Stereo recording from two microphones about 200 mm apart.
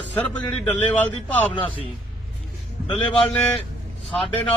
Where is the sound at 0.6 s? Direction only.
10° left (ahead or behind).